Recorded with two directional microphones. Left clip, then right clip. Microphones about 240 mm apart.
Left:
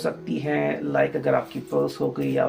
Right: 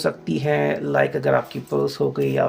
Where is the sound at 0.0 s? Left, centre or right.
Right.